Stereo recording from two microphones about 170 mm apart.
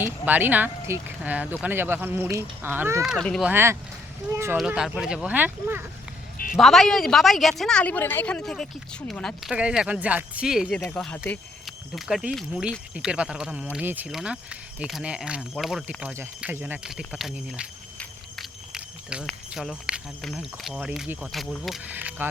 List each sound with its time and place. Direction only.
0.3 s speech: 10° right (ahead or behind)
3.0 s a woman's voice: centre (ahead or behind)
3.5 s speech: 15° right (ahead or behind)
4.5 s a woman's voice: 5° right (ahead or behind)
6.3 s a sound: 60° left (ahead or behind)
6.6 s a woman's voice: centre (ahead or behind)
16.0 s speech: 10° right (ahead or behind)
18.0 s a sound: centre (ahead or behind)
19.5 s a woman's voice: 5° right (ahead or behind)
21.8 s speech: 10° right (ahead or behind)